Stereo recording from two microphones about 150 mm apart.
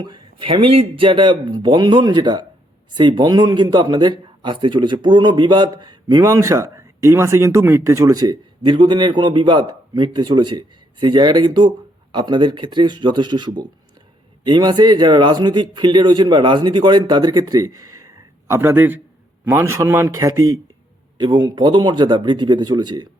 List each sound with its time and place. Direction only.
0.0 s a man's voice: 35° right (ahead or behind)